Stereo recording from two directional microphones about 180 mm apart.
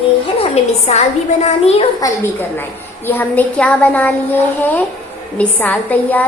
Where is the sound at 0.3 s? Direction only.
35° left (ahead or behind).